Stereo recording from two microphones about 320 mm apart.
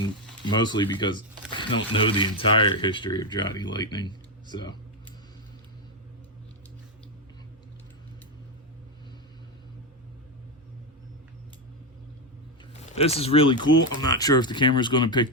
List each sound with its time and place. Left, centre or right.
0.4 s speech: centre
12.8 s speech: centre